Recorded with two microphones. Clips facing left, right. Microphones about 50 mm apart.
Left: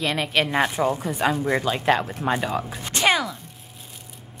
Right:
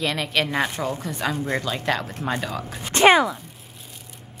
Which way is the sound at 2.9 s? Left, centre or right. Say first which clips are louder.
Right 6 dB; right.